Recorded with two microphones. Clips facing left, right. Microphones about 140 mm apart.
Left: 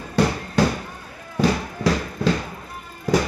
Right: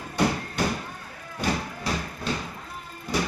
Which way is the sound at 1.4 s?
90° left.